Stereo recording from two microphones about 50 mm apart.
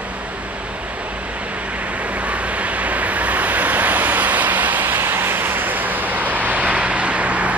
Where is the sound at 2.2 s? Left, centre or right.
Right.